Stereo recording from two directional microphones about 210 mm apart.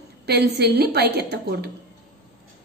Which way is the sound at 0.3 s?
50° right (ahead or behind).